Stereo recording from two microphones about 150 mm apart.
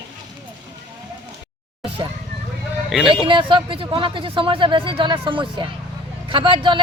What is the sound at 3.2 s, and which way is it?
Speech, 35° right (ahead or behind).